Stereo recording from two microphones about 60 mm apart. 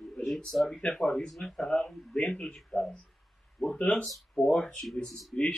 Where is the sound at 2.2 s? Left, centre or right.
Centre.